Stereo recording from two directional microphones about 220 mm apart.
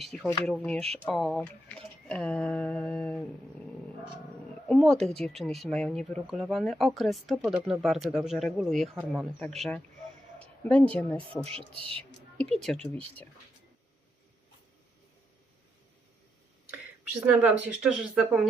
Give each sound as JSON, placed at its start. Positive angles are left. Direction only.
{"t": 0.0, "sound": "speech", "side_deg": 0}
{"t": 4.7, "sound": "speech", "side_deg": 0}
{"t": 10.4, "sound": "a sound", "side_deg": 5}
{"t": 10.9, "sound": "speech", "side_deg": 5}
{"t": 11.4, "sound": "speech", "side_deg": -25}
{"t": 12.4, "sound": "speech", "side_deg": 0}
{"t": 16.7, "sound": "a sound", "side_deg": -10}
{"t": 17.8, "sound": "speech", "side_deg": -5}